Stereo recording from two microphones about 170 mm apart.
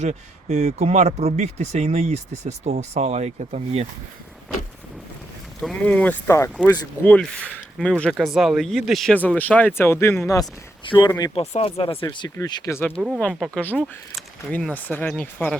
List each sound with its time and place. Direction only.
0.0 s speech: 40° right (ahead or behind)
5.5 s speech: 5° left (ahead or behind)
10.8 s speech: 30° left (ahead or behind)
13.1 s speech: 5° left (ahead or behind)